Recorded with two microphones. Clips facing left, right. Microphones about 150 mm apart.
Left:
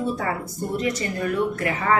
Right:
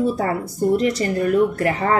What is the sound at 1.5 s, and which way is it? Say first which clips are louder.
Speech: right 3 dB; 35° right (ahead or behind).